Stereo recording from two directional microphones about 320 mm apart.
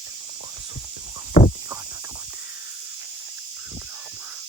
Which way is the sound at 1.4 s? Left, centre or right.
Left.